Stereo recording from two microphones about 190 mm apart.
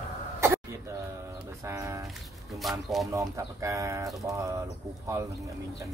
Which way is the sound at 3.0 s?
15° right (ahead or behind).